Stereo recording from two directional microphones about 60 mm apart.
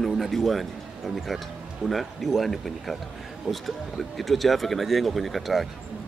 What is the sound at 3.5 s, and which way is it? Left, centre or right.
Speech, centre.